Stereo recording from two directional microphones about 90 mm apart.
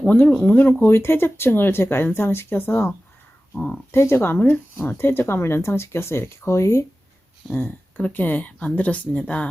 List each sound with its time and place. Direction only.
0.0 s speech: 15° left (ahead or behind); by 6.8 s 35° left (ahead or behind)
7.5 s speech: 20° left (ahead or behind)